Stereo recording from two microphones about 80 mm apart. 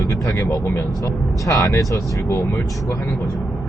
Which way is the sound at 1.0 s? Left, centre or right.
Left.